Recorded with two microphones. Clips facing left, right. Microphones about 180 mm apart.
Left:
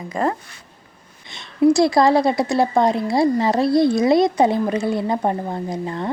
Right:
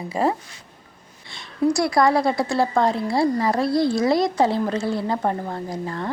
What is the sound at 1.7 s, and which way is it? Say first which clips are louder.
A woman's voice: left 2 dB; 25° left (ahead or behind).